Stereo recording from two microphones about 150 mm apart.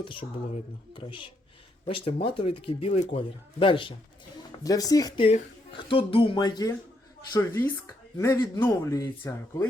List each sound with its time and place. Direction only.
0.0 s speech: 35° left (ahead or behind)
4.6 s speech: 25° left (ahead or behind)
7.3 s speech: 15° left (ahead or behind)